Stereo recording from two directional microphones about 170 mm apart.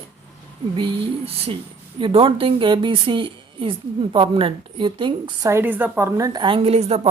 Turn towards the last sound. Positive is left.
turn(degrees=-40)  # may be behind; listen again after turning